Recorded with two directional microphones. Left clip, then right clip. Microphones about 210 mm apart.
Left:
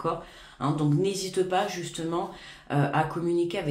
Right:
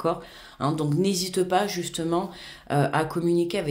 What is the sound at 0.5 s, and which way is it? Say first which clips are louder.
Speech: right 1 dB; 45° right (ahead or behind).